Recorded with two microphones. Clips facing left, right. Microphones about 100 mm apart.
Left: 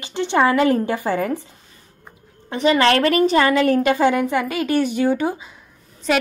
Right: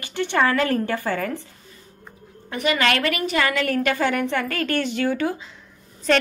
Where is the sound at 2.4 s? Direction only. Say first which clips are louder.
Left 5 dB; 30° left (ahead or behind).